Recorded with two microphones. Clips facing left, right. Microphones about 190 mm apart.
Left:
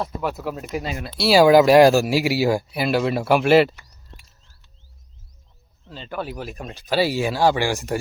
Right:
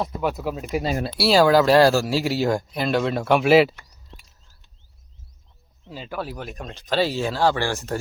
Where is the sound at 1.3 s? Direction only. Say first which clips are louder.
Left 3 dB; 15° left (ahead or behind).